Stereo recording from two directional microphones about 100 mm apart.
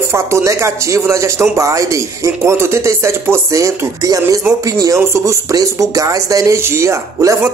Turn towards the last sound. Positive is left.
turn(degrees=-30)  # may be behind; listen again after turning